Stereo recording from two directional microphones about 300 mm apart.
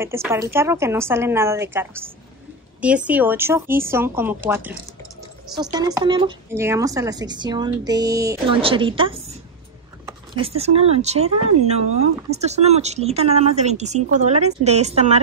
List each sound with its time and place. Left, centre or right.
0.0 s speech: centre
10.3 s speech: centre